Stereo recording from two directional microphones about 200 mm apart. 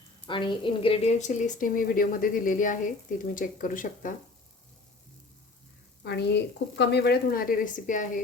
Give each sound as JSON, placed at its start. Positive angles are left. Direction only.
{"t": 0.3, "sound": "a woman's voice", "side_deg": 25}
{"t": 6.1, "sound": "a woman's voice", "side_deg": 60}